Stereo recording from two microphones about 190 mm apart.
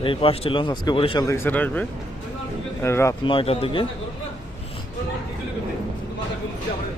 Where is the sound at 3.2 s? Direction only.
30° left (ahead or behind).